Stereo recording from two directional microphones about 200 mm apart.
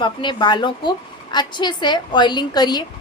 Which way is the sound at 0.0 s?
25° left (ahead or behind).